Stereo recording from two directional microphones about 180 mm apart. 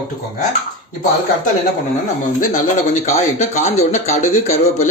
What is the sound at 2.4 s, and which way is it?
Speech, 45° left (ahead or behind).